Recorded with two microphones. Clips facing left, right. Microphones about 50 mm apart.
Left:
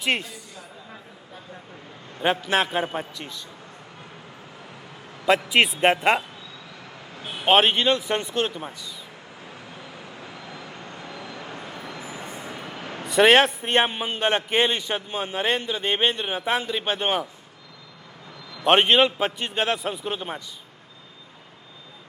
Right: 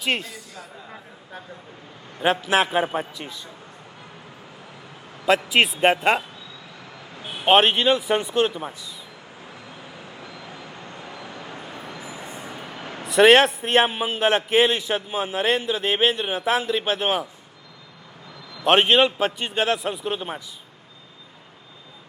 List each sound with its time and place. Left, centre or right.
0.0 s a man's voice: centre
2.2 s a man's voice: centre
5.2 s a man's voice: centre
7.4 s a man's voice: centre
10.2 s vehicle: left
10.8 s vehicle: right
11.7 s train: right
12.4 s vehicle: right
13.1 s a man's voice: centre
18.6 s a man's voice: centre